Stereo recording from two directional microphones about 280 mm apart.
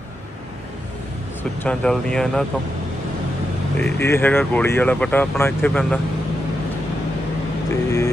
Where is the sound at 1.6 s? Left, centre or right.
Centre.